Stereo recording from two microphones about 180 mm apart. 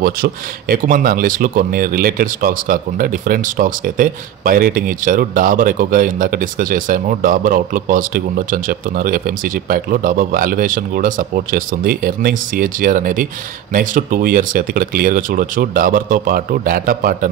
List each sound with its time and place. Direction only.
0.0 s speech: 50° right (ahead or behind)